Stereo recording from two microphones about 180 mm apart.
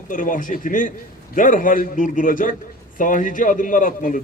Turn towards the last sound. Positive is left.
turn(degrees=50)  # may be behind; listen again after turning